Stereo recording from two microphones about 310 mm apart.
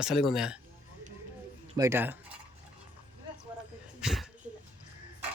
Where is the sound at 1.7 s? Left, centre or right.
Centre.